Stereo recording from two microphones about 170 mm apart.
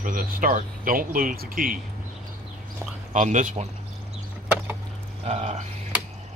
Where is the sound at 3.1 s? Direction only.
45° right (ahead or behind).